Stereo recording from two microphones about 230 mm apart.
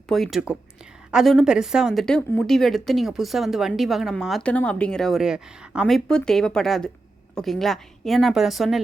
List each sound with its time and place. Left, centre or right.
0.1 s speech: centre